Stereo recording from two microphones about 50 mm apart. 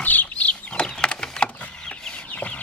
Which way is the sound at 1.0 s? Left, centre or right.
Centre.